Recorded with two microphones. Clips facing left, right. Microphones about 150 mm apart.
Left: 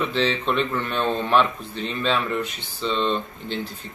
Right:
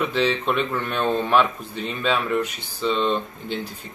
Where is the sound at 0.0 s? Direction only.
10° right (ahead or behind).